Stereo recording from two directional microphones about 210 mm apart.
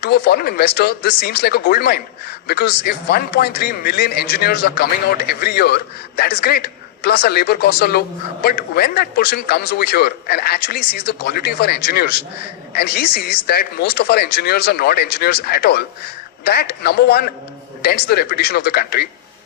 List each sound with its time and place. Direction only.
0.0 s speech: 50° left (ahead or behind)